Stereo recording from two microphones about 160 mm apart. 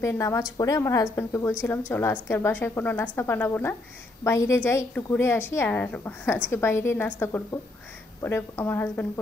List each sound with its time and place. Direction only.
0.0 s a woman's voice: 20° left (ahead or behind)